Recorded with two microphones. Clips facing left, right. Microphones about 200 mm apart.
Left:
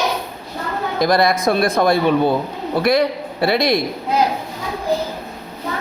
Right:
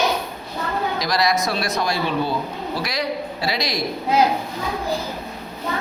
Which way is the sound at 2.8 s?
55° left (ahead or behind).